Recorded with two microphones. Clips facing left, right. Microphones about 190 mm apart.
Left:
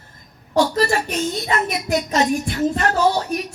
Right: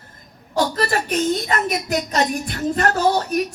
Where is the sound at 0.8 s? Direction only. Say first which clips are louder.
Left 1 dB; 50° right (ahead or behind).